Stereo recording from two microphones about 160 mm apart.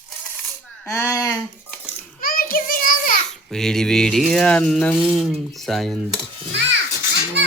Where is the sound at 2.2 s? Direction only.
65° left (ahead or behind).